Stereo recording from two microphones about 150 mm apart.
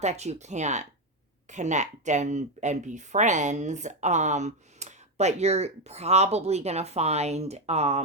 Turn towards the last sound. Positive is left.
turn(degrees=-45)  # may be behind; listen again after turning